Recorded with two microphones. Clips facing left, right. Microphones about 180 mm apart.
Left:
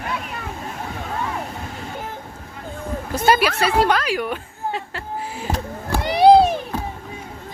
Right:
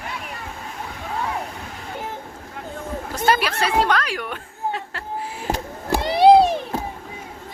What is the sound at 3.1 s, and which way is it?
A woman's voice, 10° left (ahead or behind).